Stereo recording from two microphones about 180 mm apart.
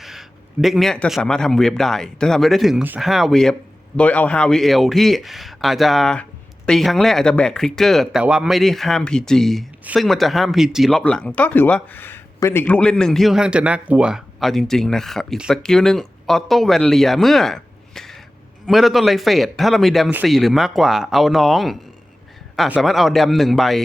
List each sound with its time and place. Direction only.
0.0 s speech: centre (ahead or behind)